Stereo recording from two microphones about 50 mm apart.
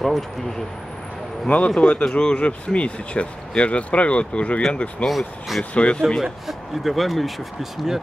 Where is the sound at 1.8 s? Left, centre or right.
Centre.